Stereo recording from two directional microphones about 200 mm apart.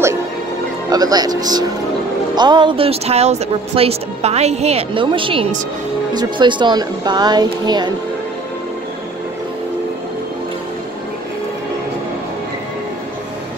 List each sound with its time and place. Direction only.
0.8 s speech: 20° right (ahead or behind)